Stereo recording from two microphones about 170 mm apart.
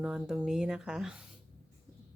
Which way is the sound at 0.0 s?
5° right (ahead or behind).